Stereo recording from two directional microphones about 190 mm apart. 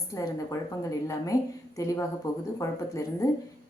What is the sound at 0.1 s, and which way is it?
A woman's voice, 15° left (ahead or behind).